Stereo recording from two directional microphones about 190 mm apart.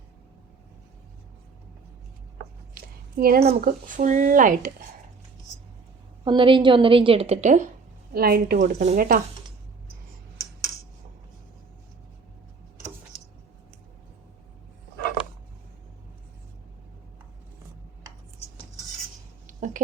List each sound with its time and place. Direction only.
2.7 s a sound: 50° right (ahead or behind)
3.5 s speech: 50° right (ahead or behind)
6.2 s a woman's voice: 25° right (ahead or behind)
8.1 s speech: 55° right (ahead or behind)
8.7 s speech: 35° right (ahead or behind)
9.0 s speech: 50° right (ahead or behind)
19.5 s a sound: 45° right (ahead or behind)